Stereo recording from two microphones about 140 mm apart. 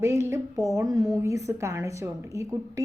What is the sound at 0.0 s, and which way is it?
A woman's voice, 20° right (ahead or behind).